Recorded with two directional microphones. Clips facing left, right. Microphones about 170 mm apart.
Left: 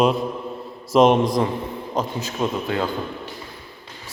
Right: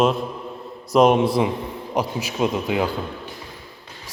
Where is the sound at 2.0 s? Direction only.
15° right (ahead or behind).